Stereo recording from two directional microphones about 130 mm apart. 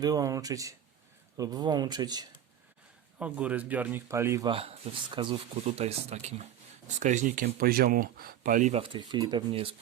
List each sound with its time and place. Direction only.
0.0 s speech: 30° right (ahead or behind)
3.2 s speech: 10° right (ahead or behind)
4.4 s speech: 45° right (ahead or behind)
5.6 s speech: 55° right (ahead or behind)
6.8 s speech: 70° right (ahead or behind)
7.9 s speech: 90° right
8.7 s speech: 40° right (ahead or behind)